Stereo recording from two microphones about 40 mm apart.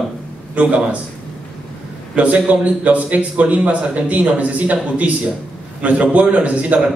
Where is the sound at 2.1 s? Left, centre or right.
Right.